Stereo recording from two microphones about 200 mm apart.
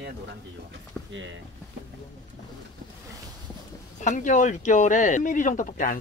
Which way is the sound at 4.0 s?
40° left (ahead or behind).